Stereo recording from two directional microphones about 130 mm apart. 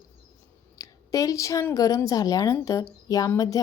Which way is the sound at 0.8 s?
25° left (ahead or behind).